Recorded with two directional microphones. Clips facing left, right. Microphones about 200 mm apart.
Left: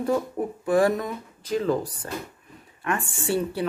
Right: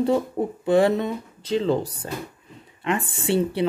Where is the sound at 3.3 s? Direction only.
20° right (ahead or behind).